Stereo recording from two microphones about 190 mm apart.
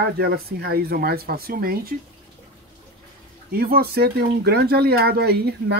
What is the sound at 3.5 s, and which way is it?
Speech, 55° right (ahead or behind).